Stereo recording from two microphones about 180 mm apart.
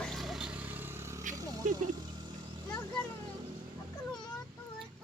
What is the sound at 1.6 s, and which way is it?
Speech, 45° right (ahead or behind).